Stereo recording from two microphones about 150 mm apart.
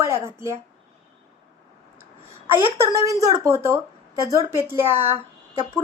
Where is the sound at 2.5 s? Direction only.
20° right (ahead or behind).